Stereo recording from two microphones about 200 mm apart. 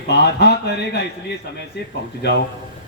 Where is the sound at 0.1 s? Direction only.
55° left (ahead or behind).